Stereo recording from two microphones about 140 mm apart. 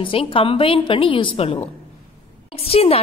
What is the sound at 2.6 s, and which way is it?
Speech, 45° left (ahead or behind).